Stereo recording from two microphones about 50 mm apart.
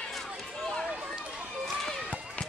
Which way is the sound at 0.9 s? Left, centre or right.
Centre.